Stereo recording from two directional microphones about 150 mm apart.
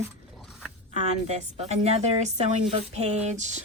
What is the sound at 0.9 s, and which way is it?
A woman's voice, 45° right (ahead or behind).